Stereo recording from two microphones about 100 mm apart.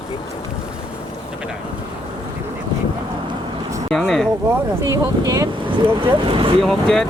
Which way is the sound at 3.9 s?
5° left (ahead or behind).